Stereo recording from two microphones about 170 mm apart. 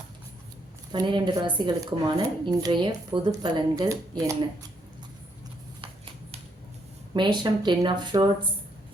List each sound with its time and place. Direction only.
0.9 s speech: 25° right (ahead or behind)
7.1 s speech: 25° right (ahead or behind)